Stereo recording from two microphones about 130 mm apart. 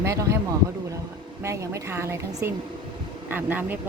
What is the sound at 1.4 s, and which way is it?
A woman's voice, 25° right (ahead or behind).